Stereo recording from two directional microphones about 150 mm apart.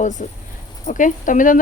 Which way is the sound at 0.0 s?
55° left (ahead or behind).